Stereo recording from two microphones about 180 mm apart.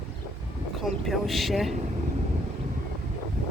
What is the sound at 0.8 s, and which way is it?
Speech, centre (ahead or behind).